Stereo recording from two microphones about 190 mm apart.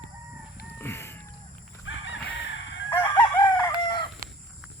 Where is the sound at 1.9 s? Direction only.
90° left.